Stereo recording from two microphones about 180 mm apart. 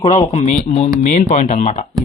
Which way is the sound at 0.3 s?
40° left (ahead or behind).